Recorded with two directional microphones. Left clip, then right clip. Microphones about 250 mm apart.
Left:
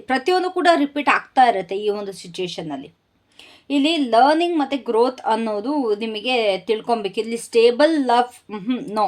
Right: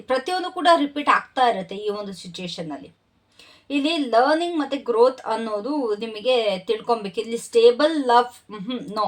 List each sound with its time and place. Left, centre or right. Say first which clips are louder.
0.1 s speech: left 4 dB; left